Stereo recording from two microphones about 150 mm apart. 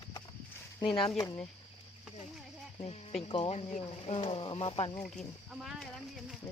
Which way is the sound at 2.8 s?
40° left (ahead or behind).